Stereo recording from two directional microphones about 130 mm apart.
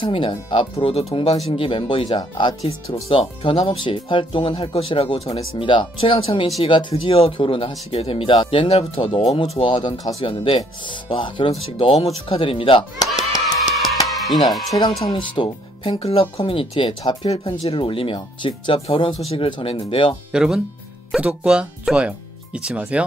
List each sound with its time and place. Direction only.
0.0 s speech: 40° left (ahead or behind)
14.0 s music: centre (ahead or behind)
14.7 s speech: 30° left (ahead or behind)
20.3 s speech: 5° right (ahead or behind)